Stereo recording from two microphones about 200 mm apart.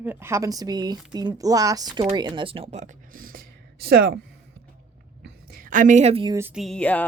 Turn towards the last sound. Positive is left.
turn(degrees=5)  # may be behind; listen again after turning